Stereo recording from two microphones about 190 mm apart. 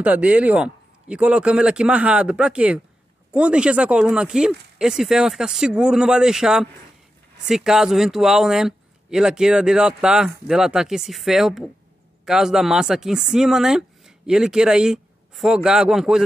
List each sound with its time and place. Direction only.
0.0 s speech: 5° right (ahead or behind)